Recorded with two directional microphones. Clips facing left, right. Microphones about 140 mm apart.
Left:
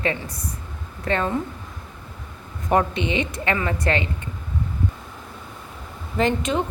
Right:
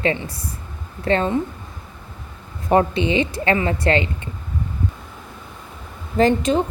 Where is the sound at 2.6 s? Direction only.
30° right (ahead or behind).